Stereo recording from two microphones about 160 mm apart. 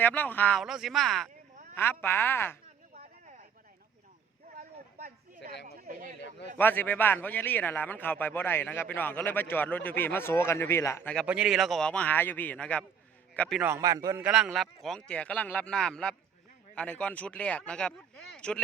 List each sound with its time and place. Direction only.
0.0 s a man's voice: 10° left (ahead or behind)
0.6 s speech: centre (ahead or behind)
1.7 s a man's voice: 10° left (ahead or behind)
2.9 s a sound: 40° right (ahead or behind)
5.6 s a sound: 55° right (ahead or behind)
6.6 s a man's voice: 10° left (ahead or behind)
11.3 s a man's voice: 5° right (ahead or behind)
13.6 s a man's voice: 20° right (ahead or behind)
14.2 s a man's voice: 10° right (ahead or behind)